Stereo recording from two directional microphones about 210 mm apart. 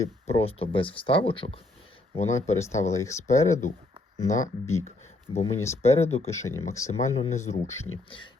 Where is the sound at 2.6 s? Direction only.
15° left (ahead or behind).